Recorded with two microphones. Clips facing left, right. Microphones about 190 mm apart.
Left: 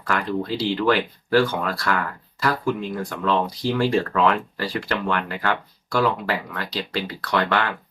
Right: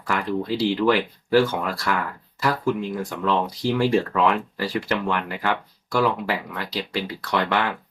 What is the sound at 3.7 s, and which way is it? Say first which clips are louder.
Speech: right 1 dB; 15° right (ahead or behind).